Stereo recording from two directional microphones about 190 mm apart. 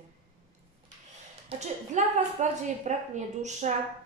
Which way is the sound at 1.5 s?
35° right (ahead or behind).